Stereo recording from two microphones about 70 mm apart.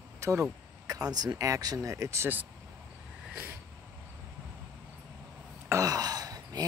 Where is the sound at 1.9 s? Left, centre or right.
Right.